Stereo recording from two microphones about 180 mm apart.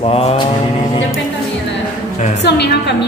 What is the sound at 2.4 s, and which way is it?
Speech, 70° left (ahead or behind).